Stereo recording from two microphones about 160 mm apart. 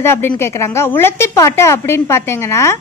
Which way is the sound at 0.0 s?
15° left (ahead or behind).